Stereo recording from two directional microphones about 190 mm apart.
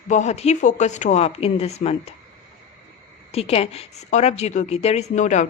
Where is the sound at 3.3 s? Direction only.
30° left (ahead or behind).